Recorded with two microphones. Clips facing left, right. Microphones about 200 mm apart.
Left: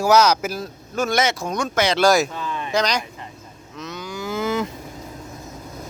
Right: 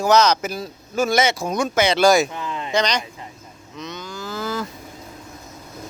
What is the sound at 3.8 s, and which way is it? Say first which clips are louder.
Cattle: left 1 dB; 5° left (ahead or behind).